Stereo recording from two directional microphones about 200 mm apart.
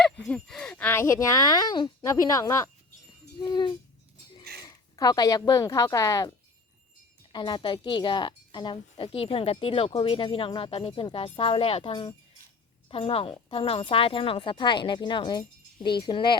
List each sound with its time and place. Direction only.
0.0 s a woman's voice: 5° left (ahead or behind)
7.3 s a woman's voice: 20° left (ahead or behind)